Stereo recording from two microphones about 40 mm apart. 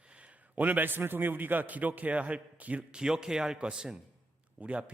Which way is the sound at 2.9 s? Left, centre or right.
Centre.